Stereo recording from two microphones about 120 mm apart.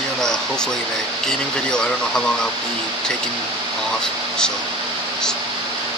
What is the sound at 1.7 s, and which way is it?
Speech, 5° left (ahead or behind).